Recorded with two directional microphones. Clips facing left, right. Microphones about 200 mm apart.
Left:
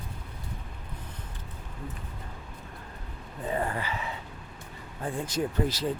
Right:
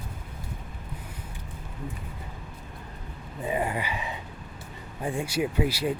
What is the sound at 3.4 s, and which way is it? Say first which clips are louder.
Speech: right 2 dB; 15° right (ahead or behind).